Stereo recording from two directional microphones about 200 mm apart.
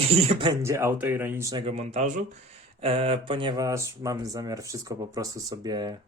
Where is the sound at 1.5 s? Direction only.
30° right (ahead or behind).